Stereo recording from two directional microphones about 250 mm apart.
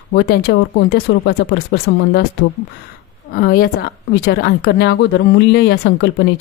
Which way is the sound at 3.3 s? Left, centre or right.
Left.